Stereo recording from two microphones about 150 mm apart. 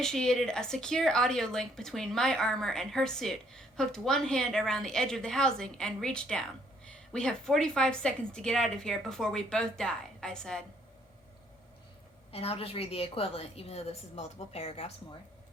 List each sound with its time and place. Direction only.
0.0 s a woman's voice: 5° left (ahead or behind)
12.3 s a woman's voice: 40° left (ahead or behind)